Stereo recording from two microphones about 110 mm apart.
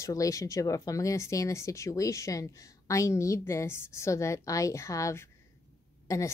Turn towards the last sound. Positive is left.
turn(degrees=30)  # may be behind; listen again after turning